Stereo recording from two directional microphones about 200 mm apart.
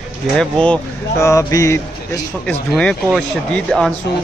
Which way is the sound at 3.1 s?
5° left (ahead or behind).